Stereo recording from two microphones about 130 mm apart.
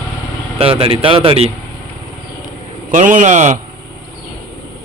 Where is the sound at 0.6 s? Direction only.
45° right (ahead or behind).